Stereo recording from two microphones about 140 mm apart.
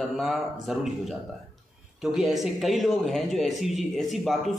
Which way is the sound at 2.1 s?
Centre (ahead or behind).